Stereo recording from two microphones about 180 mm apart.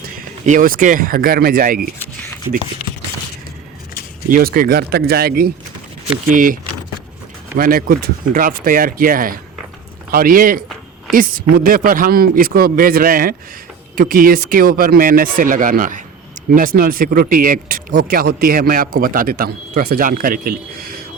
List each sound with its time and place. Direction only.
0.4 s speech: 45° right (ahead or behind)
4.3 s speech: 50° right (ahead or behind)